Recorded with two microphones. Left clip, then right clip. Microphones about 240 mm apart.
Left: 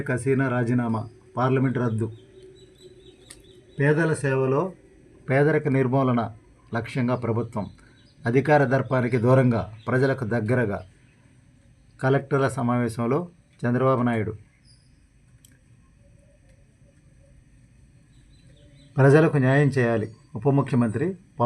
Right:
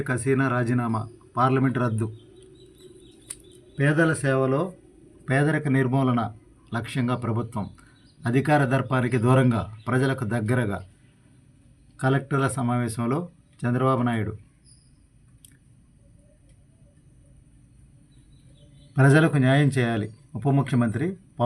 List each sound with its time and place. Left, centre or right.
0.3 s speech: right
3.8 s speech: right
12.0 s speech: right
18.9 s speech: right